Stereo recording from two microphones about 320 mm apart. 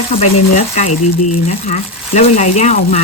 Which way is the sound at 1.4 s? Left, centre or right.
Left.